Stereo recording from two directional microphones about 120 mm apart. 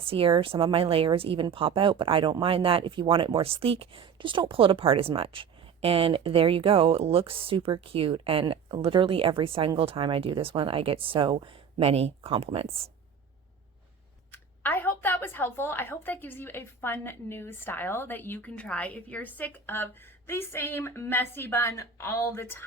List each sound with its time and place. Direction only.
0.0 s speech: 50° right (ahead or behind)
14.6 s a woman's voice: 15° left (ahead or behind)